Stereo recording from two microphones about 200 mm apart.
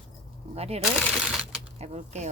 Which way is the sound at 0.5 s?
30° right (ahead or behind).